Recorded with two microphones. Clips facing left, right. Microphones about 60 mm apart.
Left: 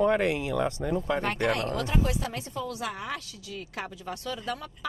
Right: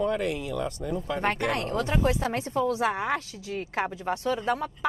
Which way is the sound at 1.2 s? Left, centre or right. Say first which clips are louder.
Right 1 dB; right.